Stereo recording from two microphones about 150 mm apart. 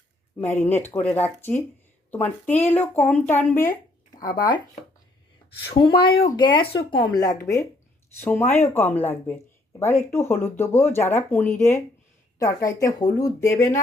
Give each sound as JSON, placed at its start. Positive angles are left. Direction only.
{"t": 0.6, "sound": "speech", "side_deg": 15}
{"t": 4.3, "sound": "speech", "side_deg": 30}
{"t": 6.3, "sound": "speech", "side_deg": 30}